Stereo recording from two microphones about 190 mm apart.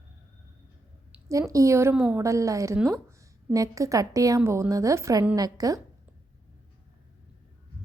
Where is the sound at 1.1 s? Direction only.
15° right (ahead or behind).